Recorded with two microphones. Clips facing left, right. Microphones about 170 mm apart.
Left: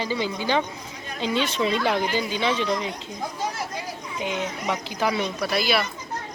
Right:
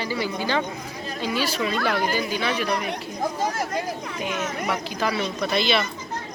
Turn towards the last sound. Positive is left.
turn(degrees=5)  # may be behind; listen again after turning